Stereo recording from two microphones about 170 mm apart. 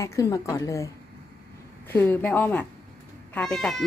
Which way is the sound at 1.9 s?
10° left (ahead or behind).